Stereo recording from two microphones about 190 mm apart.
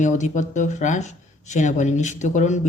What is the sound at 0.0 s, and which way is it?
Speech, 40° left (ahead or behind).